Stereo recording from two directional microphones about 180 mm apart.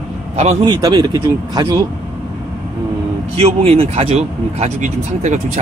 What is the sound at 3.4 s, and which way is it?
Speech, 35° right (ahead or behind).